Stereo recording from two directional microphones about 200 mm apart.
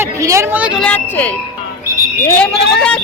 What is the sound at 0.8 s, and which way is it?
A woman's voice, 10° left (ahead or behind).